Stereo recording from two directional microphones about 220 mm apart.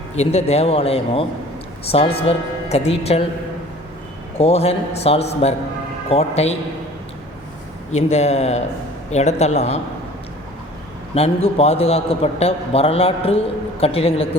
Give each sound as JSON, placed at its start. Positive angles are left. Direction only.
{"t": 0.2, "sound": "a man's voice", "side_deg": 30}
{"t": 4.4, "sound": "a man's voice", "side_deg": 25}
{"t": 7.9, "sound": "a man's voice", "side_deg": 30}
{"t": 11.4, "sound": "a man's voice", "side_deg": 25}